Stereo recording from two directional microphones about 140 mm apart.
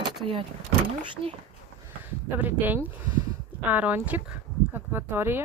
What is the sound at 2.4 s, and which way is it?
Speech, 10° right (ahead or behind).